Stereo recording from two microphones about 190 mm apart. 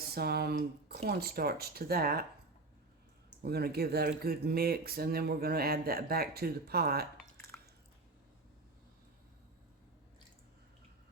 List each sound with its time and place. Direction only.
0.1 s speech: 55° right (ahead or behind)
3.4 s speech: 55° right (ahead or behind)